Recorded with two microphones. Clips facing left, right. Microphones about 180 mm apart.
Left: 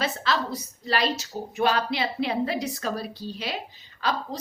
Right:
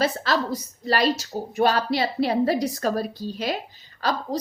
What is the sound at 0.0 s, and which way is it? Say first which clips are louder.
A woman's voice: right 4 dB; 40° right (ahead or behind).